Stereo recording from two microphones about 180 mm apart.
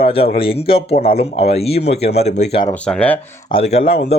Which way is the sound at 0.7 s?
55° left (ahead or behind).